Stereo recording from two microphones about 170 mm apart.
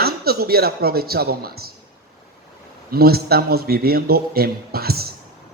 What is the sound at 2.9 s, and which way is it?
Speech, 65° right (ahead or behind).